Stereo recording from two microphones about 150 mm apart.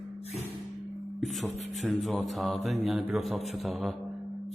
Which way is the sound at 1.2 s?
Centre (ahead or behind).